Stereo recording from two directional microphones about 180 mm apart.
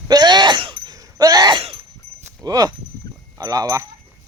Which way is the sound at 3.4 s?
20° right (ahead or behind).